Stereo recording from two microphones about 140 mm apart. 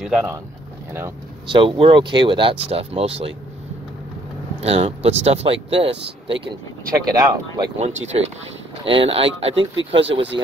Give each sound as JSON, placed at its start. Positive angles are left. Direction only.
{"t": 0.0, "sound": "speech", "side_deg": -5}
{"t": 1.5, "sound": "speech", "side_deg": -35}
{"t": 4.6, "sound": "speech", "side_deg": -45}
{"t": 6.9, "sound": "speech", "side_deg": -25}
{"t": 7.8, "sound": "speech", "side_deg": -50}
{"t": 8.8, "sound": "speech", "side_deg": -40}